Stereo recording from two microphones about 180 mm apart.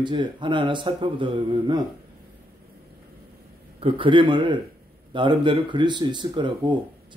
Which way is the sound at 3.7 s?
30° right (ahead or behind).